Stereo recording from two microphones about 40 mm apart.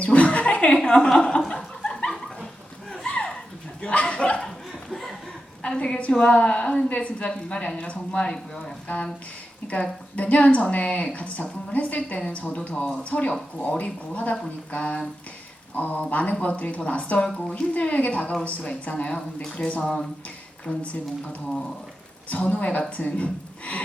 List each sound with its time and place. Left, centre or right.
0.0 s a sound: left
0.7 s a woman's voice: centre
1.5 s chuckle: centre
3.8 s chuckle: left
4.4 s laughter: centre
5.6 s a woman's voice: left
9.6 s a woman's voice: left; by 19.5 s centre
19.5 s speech: left
19.8 s a woman's voice: centre
22.3 s speech: left